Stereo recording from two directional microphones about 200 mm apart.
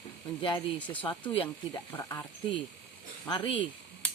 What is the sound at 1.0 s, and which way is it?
Speech, 25° left (ahead or behind).